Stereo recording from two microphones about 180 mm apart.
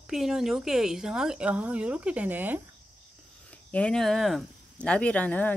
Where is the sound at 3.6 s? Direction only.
5° left (ahead or behind).